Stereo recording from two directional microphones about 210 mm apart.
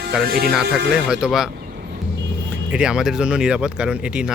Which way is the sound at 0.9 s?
5° right (ahead or behind).